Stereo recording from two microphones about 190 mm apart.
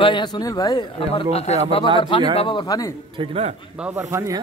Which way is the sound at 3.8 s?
15° right (ahead or behind).